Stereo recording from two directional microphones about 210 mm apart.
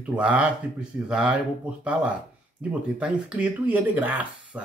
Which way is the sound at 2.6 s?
5° right (ahead or behind).